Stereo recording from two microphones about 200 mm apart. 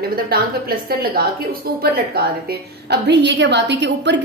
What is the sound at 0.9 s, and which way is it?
Speech, 50° right (ahead or behind).